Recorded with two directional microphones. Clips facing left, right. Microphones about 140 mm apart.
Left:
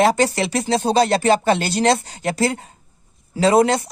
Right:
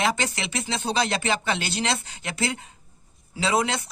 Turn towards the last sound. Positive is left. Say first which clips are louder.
# left 9 dB
turn(degrees=40)  # may be behind; listen again after turning